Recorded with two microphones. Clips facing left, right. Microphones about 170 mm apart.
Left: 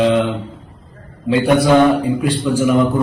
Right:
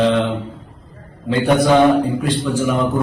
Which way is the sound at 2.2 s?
15° left (ahead or behind).